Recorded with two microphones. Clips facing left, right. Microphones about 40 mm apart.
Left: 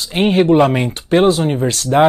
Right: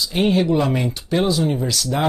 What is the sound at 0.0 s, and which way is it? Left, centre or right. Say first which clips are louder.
Speech: left 4 dB; left.